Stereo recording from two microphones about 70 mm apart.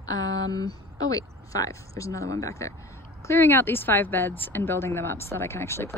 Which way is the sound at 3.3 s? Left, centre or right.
Left.